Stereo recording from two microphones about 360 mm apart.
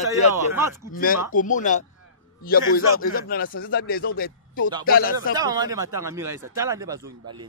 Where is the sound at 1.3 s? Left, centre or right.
Left.